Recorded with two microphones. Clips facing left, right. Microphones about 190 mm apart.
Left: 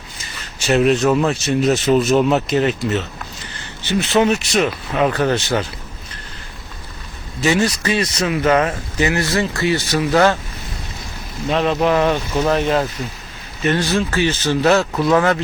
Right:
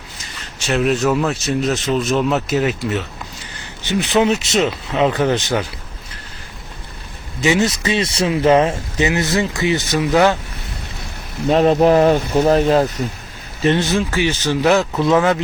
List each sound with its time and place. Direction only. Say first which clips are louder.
0.7 s speech: left 2 dB; centre (ahead or behind)
3.8 s speech: even; 15° right (ahead or behind)
7.4 s speech: right 1 dB; 20° right (ahead or behind)
11.5 s speech: right 4 dB; 40° right (ahead or behind); by 15.4 s 15° right (ahead or behind)